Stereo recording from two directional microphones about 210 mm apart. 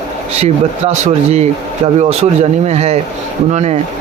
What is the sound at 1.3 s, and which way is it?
Speech, 30° right (ahead or behind).